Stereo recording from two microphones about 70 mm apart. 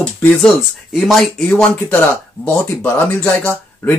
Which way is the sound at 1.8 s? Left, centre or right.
Left.